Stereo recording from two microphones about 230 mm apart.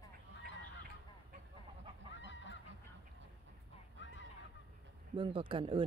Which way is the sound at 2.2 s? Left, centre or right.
Left.